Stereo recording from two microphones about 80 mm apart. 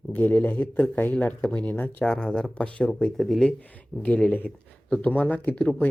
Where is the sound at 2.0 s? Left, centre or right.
Centre.